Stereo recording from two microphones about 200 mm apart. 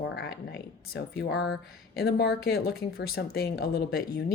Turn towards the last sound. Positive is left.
turn(degrees=50)  # may be behind; listen again after turning